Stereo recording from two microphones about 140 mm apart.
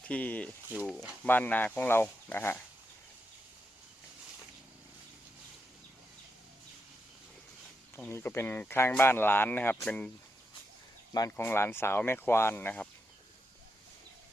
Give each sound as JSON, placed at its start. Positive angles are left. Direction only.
{"t": 0.0, "sound": "speech", "side_deg": 10}
{"t": 7.9, "sound": "speech", "side_deg": 15}
{"t": 11.3, "sound": "speech", "side_deg": 15}